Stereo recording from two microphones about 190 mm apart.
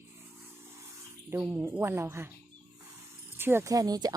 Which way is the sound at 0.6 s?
15° right (ahead or behind).